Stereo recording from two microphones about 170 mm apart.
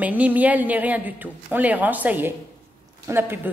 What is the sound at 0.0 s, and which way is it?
Speech, 10° right (ahead or behind).